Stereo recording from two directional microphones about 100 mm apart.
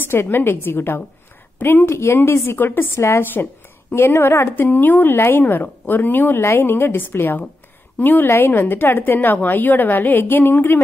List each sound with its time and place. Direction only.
0.0 s a woman's voice: 20° left (ahead or behind)